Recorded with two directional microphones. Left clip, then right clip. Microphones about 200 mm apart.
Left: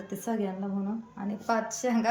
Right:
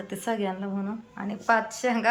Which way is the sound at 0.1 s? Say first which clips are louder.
Right 4 dB; centre (ahead or behind).